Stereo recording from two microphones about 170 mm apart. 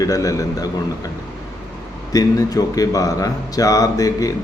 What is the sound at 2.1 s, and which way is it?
A man's voice, 20° left (ahead or behind).